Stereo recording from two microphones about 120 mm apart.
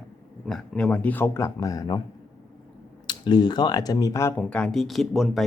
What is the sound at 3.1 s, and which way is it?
Speech, 35° left (ahead or behind).